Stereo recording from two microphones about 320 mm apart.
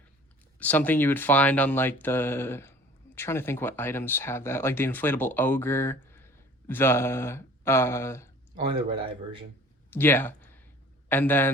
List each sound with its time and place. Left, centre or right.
0.6 s speech: centre
8.5 s speech: centre
9.9 s a sound: centre
11.1 s speech: centre